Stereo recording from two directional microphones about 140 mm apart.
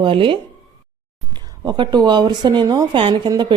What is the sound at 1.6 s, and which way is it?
Speech, 35° right (ahead or behind).